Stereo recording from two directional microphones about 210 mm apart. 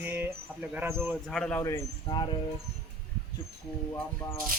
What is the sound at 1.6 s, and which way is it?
Speech, 15° left (ahead or behind).